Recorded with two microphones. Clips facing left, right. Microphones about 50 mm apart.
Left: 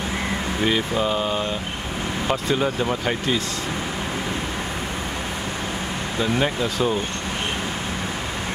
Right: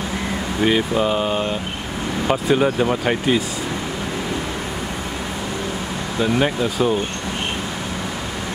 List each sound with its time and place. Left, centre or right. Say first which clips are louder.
0.7 s speech: right 4 dB; centre
6.2 s speech: right 4 dB; centre